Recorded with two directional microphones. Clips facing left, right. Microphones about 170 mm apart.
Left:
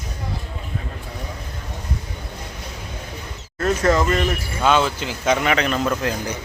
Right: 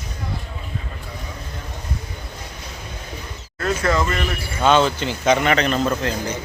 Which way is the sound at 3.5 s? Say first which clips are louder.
Left 3 dB; 40° left (ahead or behind).